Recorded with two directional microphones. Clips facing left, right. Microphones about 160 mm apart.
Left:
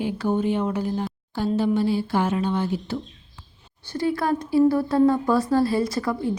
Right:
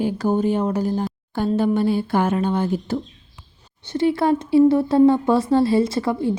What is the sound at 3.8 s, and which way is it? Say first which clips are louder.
Speech: right 5 dB; 25° right (ahead or behind).